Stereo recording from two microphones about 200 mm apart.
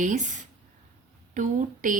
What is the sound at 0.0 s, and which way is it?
Speech, 40° right (ahead or behind).